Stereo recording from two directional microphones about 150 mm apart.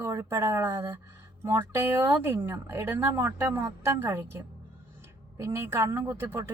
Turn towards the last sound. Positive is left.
turn(degrees=-15)  # may be behind; listen again after turning